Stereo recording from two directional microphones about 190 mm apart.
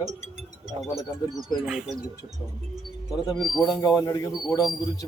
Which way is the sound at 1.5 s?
5° right (ahead or behind).